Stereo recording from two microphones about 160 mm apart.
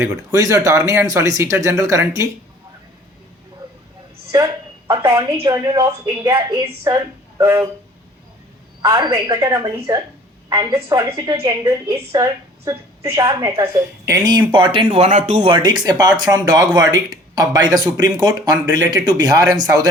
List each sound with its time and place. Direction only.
0.0 s speech: 20° right (ahead or behind)
4.9 s speech: 20° right (ahead or behind)
8.8 s speech: 30° right (ahead or behind)
9.1 s speech: 20° right (ahead or behind)